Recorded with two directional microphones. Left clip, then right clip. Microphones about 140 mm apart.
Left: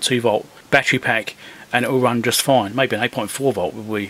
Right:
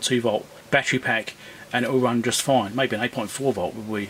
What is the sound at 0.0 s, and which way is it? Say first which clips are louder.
Speech: left 5 dB; 30° left (ahead or behind).